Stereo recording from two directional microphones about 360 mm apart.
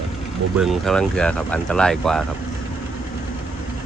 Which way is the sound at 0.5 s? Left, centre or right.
Centre.